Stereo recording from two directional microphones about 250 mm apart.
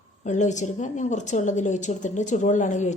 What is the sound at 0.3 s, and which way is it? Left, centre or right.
A woman's voice, left.